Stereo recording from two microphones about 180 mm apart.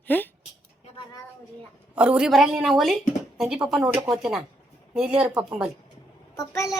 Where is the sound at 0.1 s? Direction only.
10° left (ahead or behind).